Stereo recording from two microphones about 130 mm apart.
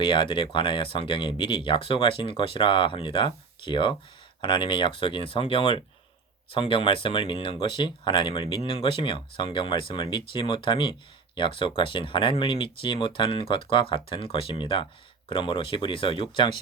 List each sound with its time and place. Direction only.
0.0 s speech: 40° left (ahead or behind)